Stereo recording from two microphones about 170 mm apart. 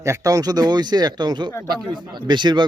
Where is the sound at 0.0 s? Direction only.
20° right (ahead or behind).